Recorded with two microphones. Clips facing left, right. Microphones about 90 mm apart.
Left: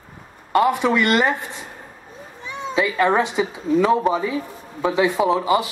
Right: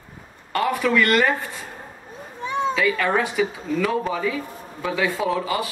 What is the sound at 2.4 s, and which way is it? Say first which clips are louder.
Cat: right 7 dB; 50° right (ahead or behind).